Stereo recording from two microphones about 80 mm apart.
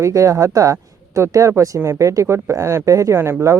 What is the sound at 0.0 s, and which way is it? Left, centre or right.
Speech, right.